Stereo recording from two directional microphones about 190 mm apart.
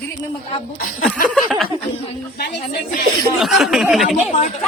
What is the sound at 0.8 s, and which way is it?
Speech, 45° left (ahead or behind).